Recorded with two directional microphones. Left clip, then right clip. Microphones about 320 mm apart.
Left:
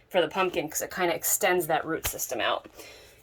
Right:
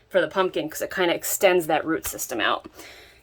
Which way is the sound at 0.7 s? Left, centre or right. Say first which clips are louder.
Right 4 dB; right.